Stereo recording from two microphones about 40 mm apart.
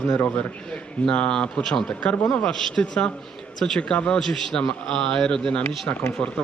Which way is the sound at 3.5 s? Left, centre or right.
Centre.